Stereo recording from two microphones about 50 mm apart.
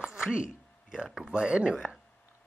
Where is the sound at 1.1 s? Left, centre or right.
Centre.